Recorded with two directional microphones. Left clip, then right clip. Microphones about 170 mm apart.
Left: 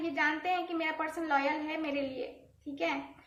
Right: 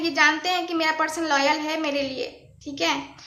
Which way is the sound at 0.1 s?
20° right (ahead or behind).